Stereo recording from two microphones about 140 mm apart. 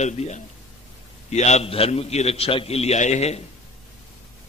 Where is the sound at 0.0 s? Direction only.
55° left (ahead or behind).